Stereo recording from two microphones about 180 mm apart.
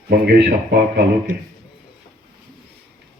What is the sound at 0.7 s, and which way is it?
Speech, 65° right (ahead or behind).